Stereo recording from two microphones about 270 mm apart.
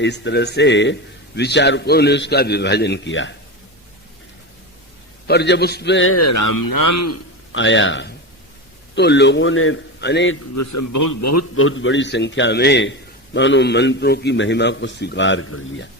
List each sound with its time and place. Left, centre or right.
0.0 s a man's voice: left
5.3 s a man's voice: left
6.2 s a man's voice: left
7.5 s a man's voice: left
10.5 s a man's voice: left
11.5 s a man's voice: left